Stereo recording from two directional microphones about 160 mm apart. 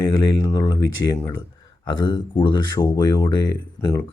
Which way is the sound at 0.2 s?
25° left (ahead or behind).